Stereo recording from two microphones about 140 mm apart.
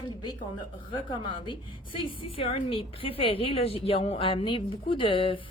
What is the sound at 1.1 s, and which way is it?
A woman's voice, 35° left (ahead or behind).